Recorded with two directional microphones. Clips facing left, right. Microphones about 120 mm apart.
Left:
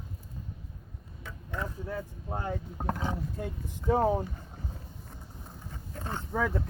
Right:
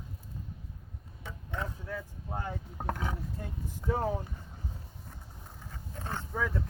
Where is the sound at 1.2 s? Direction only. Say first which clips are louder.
Left 1 dB; 20° right (ahead or behind).